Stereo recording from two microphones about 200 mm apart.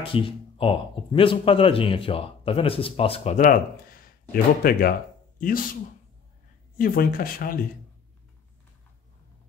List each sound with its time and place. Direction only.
0.0 s speech: 25° left (ahead or behind)
4.3 s speech: 50° left (ahead or behind)
6.8 s speech: 45° left (ahead or behind)